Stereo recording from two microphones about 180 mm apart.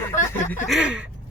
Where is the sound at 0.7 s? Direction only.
5° right (ahead or behind).